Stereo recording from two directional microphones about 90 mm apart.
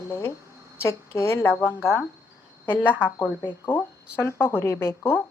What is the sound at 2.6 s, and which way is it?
Speech, 25° left (ahead or behind).